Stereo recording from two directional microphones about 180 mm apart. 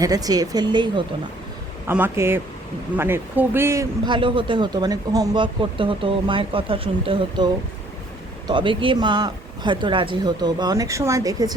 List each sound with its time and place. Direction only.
0.0 s a man's voice: 20° right (ahead or behind)
1.9 s a man's voice: 10° right (ahead or behind)